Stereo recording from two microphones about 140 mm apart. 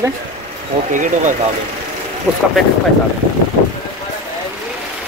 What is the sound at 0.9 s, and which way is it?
Speech, 65° right (ahead or behind).